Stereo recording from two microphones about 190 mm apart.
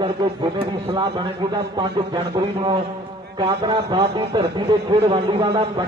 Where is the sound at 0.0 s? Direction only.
30° right (ahead or behind).